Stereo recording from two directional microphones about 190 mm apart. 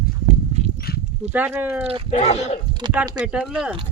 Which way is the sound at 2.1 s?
35° left (ahead or behind).